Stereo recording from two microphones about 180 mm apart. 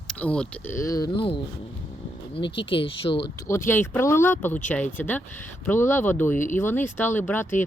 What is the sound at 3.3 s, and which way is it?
Speech, 15° left (ahead or behind).